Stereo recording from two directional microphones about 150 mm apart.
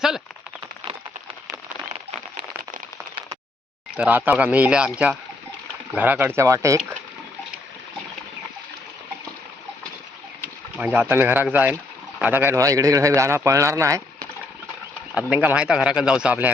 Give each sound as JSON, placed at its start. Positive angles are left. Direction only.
{"t": 3.9, "sound": "speech", "side_deg": -10}
{"t": 10.8, "sound": "speech", "side_deg": -10}
{"t": 15.1, "sound": "speech", "side_deg": -10}